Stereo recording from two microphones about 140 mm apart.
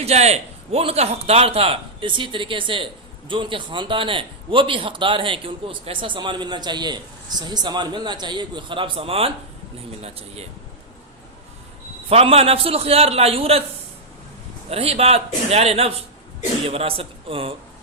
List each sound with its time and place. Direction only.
0.0 s a man's voice: 50° right (ahead or behind)
12.0 s a man's voice: 45° right (ahead or behind)
14.7 s a man's voice: 45° right (ahead or behind)